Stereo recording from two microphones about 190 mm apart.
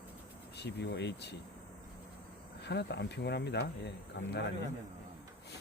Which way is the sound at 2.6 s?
60° left (ahead or behind).